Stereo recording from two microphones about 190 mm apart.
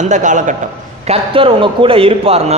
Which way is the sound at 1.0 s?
30° right (ahead or behind).